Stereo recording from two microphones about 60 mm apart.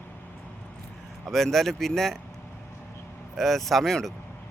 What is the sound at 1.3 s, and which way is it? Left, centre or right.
Speech, centre.